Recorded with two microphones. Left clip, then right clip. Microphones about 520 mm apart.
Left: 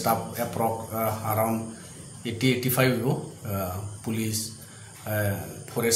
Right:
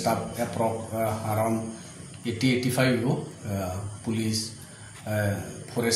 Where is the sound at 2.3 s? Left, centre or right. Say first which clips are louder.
Left 1 dB; left.